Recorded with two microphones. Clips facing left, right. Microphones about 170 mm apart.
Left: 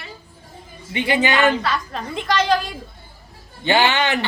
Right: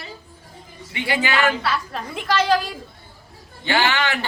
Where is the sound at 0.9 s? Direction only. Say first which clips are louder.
Left 4 dB; 20° left (ahead or behind).